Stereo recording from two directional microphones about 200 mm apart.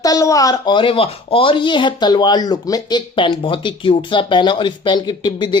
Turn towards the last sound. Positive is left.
turn(degrees=20)  # may be behind; listen again after turning